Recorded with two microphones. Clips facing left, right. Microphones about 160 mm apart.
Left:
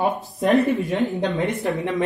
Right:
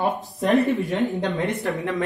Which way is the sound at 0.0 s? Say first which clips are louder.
Left 2 dB; centre (ahead or behind).